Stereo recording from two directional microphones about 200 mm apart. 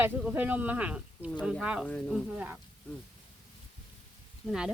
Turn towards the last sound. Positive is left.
turn(degrees=-5)  # may be behind; listen again after turning